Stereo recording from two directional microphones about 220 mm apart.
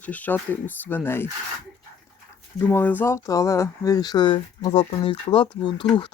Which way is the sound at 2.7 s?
10° left (ahead or behind).